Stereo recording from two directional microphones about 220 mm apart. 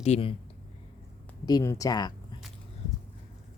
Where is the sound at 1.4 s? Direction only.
15° left (ahead or behind).